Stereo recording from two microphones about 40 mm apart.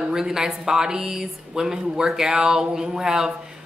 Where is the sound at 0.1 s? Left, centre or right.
Centre.